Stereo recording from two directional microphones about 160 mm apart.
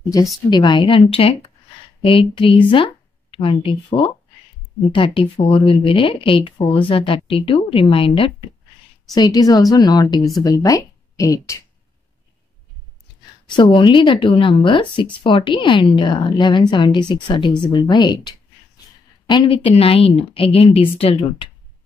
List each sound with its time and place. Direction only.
0.5 s a woman's voice: 30° left (ahead or behind)
9.1 s a woman's voice: 25° left (ahead or behind)
13.5 s a woman's voice: 30° left (ahead or behind)